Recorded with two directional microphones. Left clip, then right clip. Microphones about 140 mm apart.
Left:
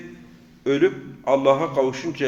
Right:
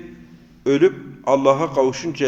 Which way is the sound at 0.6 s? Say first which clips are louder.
Right 3 dB; 25° right (ahead or behind).